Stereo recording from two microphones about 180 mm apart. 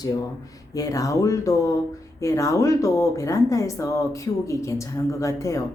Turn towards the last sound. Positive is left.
turn(degrees=15)  # may be behind; listen again after turning